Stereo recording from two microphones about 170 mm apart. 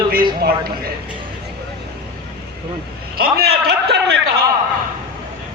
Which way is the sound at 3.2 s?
70° right (ahead or behind).